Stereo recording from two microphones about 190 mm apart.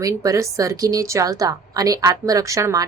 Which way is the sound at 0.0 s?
15° right (ahead or behind).